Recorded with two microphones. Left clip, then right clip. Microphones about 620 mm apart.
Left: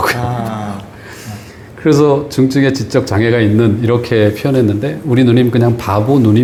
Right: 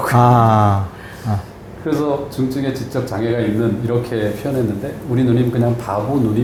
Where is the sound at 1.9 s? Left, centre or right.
Left.